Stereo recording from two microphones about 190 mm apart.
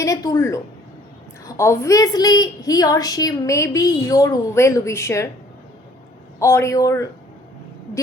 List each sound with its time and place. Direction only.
0.0 s a woman's voice: 15° left (ahead or behind)
6.4 s a woman's voice: 15° left (ahead or behind)